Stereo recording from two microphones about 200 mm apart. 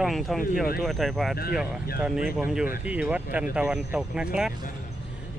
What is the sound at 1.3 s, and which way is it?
Speech, 50° left (ahead or behind).